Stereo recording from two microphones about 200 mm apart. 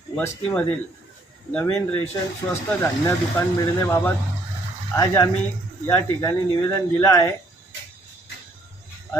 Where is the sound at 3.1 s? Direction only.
15° left (ahead or behind).